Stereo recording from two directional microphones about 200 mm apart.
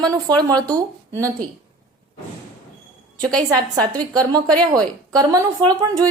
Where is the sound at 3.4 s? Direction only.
20° right (ahead or behind).